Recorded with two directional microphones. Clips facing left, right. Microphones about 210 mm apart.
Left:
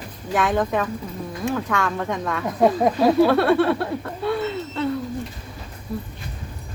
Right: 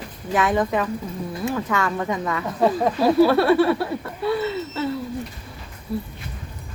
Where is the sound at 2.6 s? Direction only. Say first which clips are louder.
Left 2 dB; 15° left (ahead or behind).